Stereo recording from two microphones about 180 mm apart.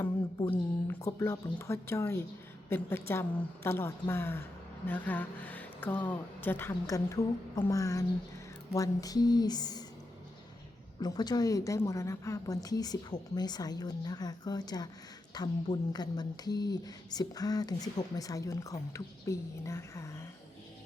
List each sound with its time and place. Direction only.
0.5 s speech: 15° left (ahead or behind)
11.0 s speech: 20° left (ahead or behind)